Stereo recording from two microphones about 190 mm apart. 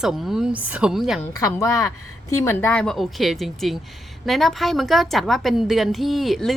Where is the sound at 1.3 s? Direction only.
15° left (ahead or behind).